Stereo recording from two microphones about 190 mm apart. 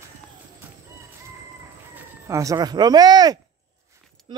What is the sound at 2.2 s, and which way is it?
Speech, 15° right (ahead or behind).